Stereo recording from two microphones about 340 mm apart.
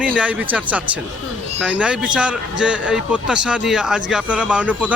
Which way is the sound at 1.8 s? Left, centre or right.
Centre.